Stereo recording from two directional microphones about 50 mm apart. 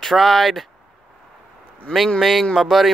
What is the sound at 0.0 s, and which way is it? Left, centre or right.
Speech, centre.